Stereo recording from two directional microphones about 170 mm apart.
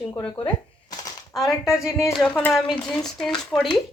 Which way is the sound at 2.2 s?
5° left (ahead or behind).